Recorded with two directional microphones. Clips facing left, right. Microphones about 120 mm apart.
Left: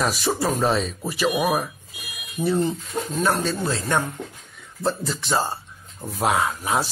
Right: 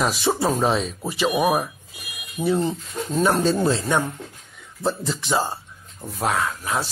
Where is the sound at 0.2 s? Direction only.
25° right (ahead or behind).